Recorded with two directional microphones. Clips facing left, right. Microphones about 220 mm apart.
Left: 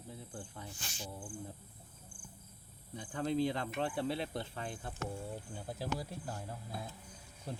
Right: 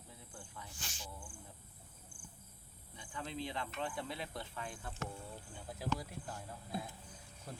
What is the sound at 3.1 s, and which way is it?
Speech, 45° left (ahead or behind).